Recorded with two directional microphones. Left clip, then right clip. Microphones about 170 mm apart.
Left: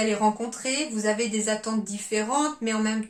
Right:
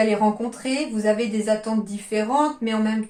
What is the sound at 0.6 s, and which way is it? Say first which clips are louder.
Speech: right 3 dB; 30° left (ahead or behind).